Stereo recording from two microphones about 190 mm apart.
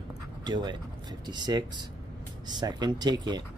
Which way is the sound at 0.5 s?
20° right (ahead or behind).